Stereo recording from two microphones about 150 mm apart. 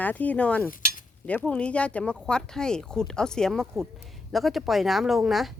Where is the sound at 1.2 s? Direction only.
10° left (ahead or behind).